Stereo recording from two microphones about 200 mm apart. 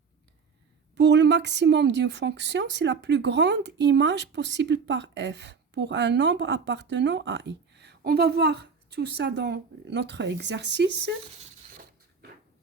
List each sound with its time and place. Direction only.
0.9 s a woman's voice: 60° right (ahead or behind)